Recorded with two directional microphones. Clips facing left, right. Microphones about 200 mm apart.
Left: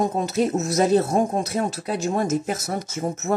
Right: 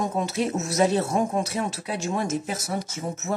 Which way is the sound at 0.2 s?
40° left (ahead or behind).